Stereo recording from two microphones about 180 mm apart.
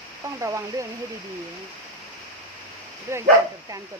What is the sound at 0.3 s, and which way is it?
Speech, 15° right (ahead or behind).